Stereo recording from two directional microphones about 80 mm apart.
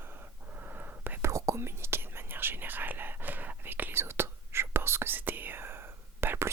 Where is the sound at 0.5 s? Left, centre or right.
Right.